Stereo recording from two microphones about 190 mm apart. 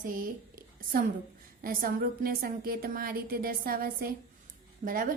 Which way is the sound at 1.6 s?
50° right (ahead or behind).